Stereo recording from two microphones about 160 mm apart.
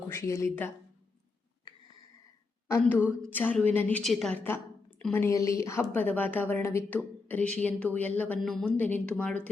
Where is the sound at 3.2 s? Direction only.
10° left (ahead or behind).